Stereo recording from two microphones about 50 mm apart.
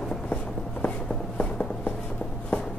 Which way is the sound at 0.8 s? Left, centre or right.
Left.